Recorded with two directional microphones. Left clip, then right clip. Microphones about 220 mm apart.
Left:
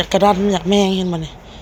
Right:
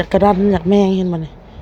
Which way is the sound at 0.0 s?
20° right (ahead or behind).